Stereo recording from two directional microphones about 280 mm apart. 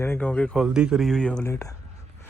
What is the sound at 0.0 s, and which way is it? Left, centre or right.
Speech, centre.